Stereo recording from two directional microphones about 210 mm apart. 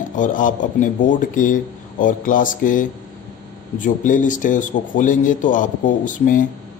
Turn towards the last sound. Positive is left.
turn(degrees=40)  # may be behind; listen again after turning